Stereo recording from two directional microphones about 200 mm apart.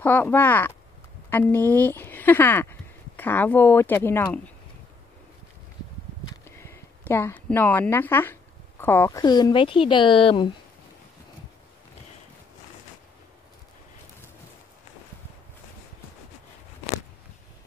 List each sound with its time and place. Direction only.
0.0 s speech: 10° left (ahead or behind)
6.6 s speech: 10° left (ahead or behind)